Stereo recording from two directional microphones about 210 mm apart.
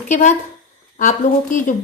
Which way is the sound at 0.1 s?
35° left (ahead or behind).